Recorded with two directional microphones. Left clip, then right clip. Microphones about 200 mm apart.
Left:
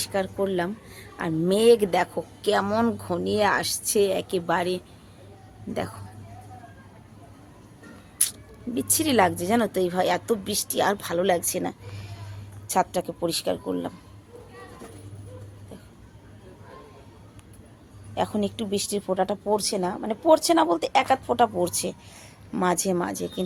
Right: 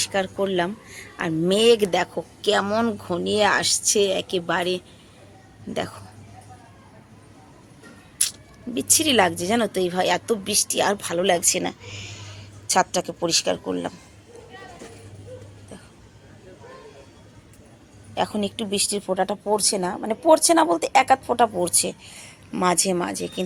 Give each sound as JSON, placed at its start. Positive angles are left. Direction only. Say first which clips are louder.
{"t": 0.0, "sound": "speech", "louder": "right 3 dB", "side_deg": 0}
{"t": 8.7, "sound": "speech", "louder": "right 3 dB", "side_deg": 0}
{"t": 11.9, "sound": "speech", "louder": "right 8 dB", "side_deg": 40}
{"t": 12.7, "sound": "speech", "louder": "right 3 dB", "side_deg": 0}
{"t": 18.1, "sound": "speech", "louder": "right 2 dB", "side_deg": 0}